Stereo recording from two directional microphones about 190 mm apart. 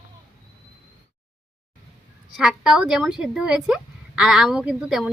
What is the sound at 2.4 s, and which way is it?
A woman's voice, 5° right (ahead or behind).